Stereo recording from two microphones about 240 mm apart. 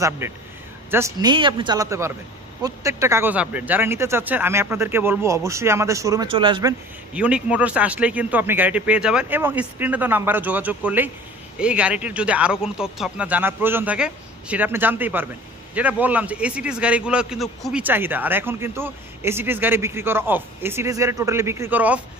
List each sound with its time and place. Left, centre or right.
0.2 s a man's voice: centre
7.2 s a man's voice: centre